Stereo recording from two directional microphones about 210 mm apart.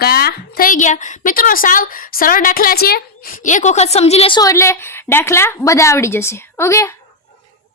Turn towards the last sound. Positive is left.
turn(degrees=15)  # may be behind; listen again after turning